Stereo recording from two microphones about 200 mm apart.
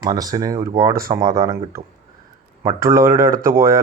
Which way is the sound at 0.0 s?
20° right (ahead or behind).